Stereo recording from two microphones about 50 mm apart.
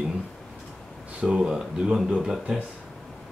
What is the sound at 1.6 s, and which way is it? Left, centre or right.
Speech, centre.